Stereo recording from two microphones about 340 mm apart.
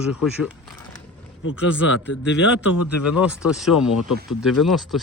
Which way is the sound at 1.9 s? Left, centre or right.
Left.